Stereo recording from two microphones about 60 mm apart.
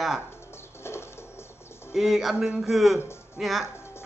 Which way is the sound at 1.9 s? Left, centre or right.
Centre.